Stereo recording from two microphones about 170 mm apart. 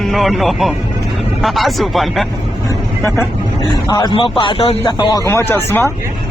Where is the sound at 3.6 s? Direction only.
25° left (ahead or behind).